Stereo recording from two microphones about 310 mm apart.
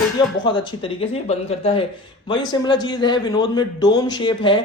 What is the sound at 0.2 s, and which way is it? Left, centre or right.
A man's voice, centre.